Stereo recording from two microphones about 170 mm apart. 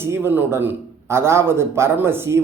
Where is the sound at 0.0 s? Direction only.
15° right (ahead or behind).